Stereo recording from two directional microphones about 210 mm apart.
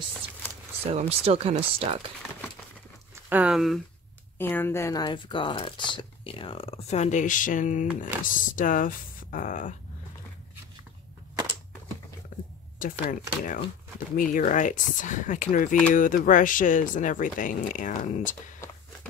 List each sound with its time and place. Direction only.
0.8 s speech: 30° right (ahead or behind)
3.3 s speech: 5° right (ahead or behind)
4.4 s speech: 10° left (ahead or behind); by 9.8 s 40° left (ahead or behind)
12.3 s a sound: 40° left (ahead or behind)
12.7 s speech: 40° left (ahead or behind)